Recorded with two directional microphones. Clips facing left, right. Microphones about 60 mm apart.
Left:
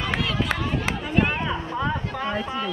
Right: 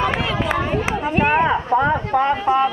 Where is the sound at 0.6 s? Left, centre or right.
Right.